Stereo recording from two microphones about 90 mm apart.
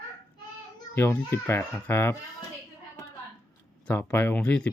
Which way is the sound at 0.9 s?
20° left (ahead or behind).